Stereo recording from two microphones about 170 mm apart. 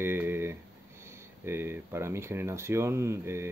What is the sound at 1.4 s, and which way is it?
Speech, 15° right (ahead or behind).